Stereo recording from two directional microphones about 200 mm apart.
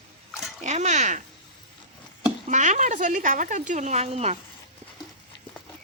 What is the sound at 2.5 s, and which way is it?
Speech, 35° right (ahead or behind).